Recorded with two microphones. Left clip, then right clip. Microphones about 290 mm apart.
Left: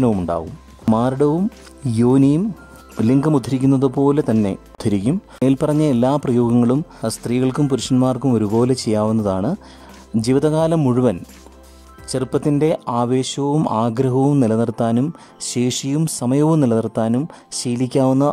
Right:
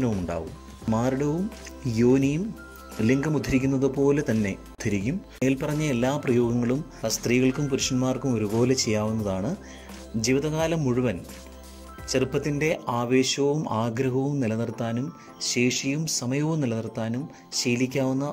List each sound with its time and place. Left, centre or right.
0.9 s speech: centre